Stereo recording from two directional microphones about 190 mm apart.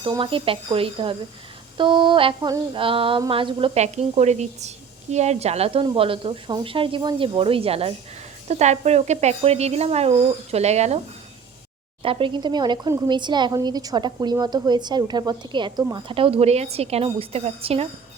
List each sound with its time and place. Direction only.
0.0 s speech: 25° right (ahead or behind)
12.0 s speech: 25° right (ahead or behind)